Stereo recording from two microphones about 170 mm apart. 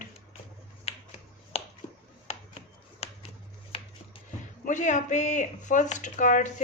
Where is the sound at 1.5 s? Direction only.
35° left (ahead or behind).